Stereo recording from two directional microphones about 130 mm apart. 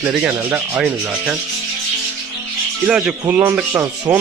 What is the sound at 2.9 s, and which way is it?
Speech, 10° right (ahead or behind).